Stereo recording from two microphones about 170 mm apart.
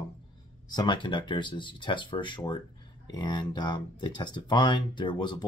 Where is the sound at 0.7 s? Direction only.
30° left (ahead or behind).